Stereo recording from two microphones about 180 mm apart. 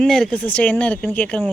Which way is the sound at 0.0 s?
5° left (ahead or behind).